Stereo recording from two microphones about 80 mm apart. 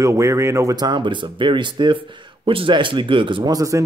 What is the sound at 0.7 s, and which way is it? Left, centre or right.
Speech, right.